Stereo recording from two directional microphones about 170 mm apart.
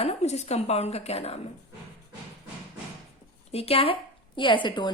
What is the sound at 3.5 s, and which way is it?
Speech, 35° left (ahead or behind).